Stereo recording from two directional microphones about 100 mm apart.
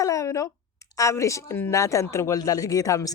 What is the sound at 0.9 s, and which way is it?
A woman's voice, 30° left (ahead or behind).